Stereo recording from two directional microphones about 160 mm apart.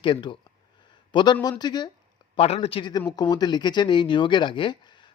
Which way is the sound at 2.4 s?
40° left (ahead or behind).